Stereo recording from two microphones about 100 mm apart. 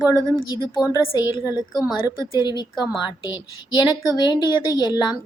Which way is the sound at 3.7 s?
45° left (ahead or behind).